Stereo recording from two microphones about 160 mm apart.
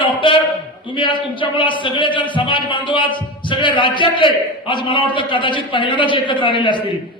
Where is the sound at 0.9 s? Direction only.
30° left (ahead or behind).